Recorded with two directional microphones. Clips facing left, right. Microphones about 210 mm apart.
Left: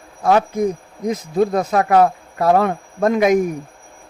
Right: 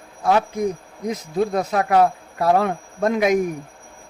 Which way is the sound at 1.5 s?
50° left (ahead or behind).